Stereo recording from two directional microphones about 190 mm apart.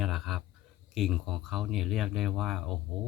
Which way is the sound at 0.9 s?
Centre (ahead or behind).